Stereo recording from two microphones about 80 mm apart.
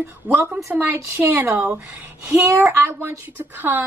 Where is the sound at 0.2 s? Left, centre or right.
Right.